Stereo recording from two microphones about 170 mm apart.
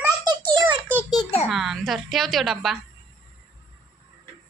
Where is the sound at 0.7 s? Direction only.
10° right (ahead or behind).